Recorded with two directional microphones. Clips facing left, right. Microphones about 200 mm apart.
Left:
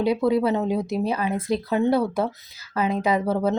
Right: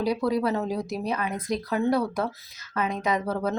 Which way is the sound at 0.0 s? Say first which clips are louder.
Left 4 dB; 25° left (ahead or behind).